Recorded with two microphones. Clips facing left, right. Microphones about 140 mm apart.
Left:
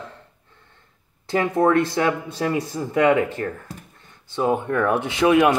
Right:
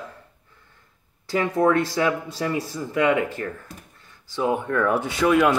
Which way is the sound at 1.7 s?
55° left (ahead or behind).